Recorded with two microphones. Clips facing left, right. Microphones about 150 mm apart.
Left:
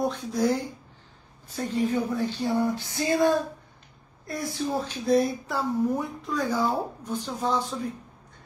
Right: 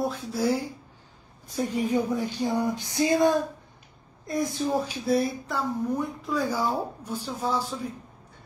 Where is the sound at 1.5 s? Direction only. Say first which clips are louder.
Right 1 dB; 10° right (ahead or behind).